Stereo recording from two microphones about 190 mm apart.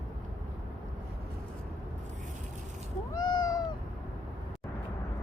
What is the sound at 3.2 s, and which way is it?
Cat, 20° left (ahead or behind).